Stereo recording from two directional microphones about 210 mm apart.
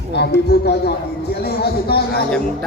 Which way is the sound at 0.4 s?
50° left (ahead or behind).